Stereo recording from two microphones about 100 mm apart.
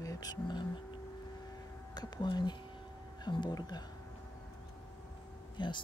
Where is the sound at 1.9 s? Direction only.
45° left (ahead or behind).